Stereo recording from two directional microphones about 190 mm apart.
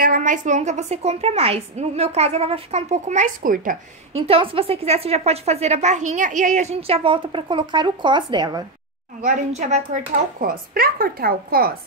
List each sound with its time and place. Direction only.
0.0 s a woman's voice: 45° right (ahead or behind)
4.3 s a woman's voice: 30° right (ahead or behind)
9.2 s speech: 40° right (ahead or behind)